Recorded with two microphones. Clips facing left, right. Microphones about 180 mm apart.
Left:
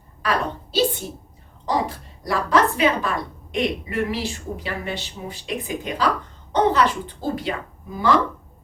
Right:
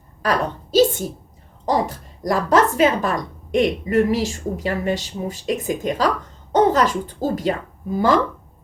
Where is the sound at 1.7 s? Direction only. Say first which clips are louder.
Right 3 dB; 45° right (ahead or behind).